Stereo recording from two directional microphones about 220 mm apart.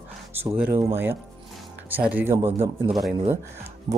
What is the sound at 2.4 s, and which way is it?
Speech, 25° right (ahead or behind).